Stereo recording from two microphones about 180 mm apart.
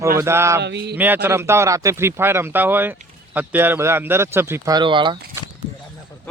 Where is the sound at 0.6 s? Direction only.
70° right (ahead or behind).